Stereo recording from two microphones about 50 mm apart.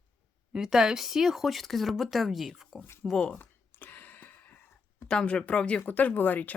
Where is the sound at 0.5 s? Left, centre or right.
Centre.